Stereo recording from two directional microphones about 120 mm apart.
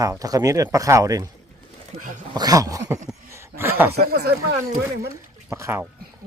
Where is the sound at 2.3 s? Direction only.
30° right (ahead or behind).